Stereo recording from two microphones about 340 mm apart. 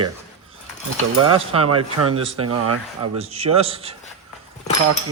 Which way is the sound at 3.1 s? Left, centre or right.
Centre.